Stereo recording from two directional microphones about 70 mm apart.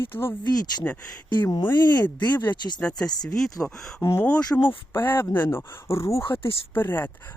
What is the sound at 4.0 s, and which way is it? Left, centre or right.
Speech, left.